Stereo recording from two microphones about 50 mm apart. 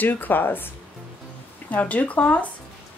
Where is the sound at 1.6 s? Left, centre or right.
Left.